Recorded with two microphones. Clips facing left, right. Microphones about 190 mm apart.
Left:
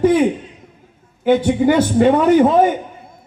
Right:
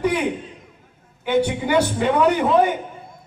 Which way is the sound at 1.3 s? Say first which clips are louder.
Left 6 dB; 45° left (ahead or behind).